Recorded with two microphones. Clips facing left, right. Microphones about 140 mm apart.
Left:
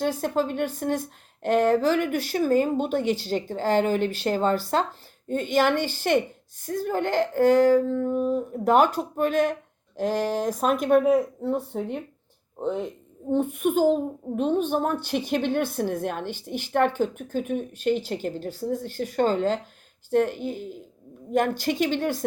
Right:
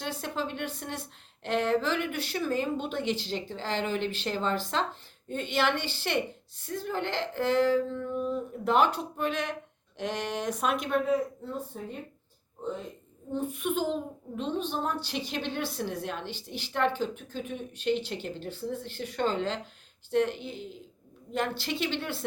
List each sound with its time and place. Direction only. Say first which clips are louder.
0.0 s a child's voice: left 9 dB; 45° left (ahead or behind); by 12.9 s 70° left (ahead or behind)
13.3 s a child's voice: left 8 dB; 55° left (ahead or behind)